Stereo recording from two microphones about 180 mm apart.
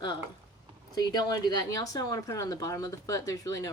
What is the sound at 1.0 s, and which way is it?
Speech, 20° left (ahead or behind).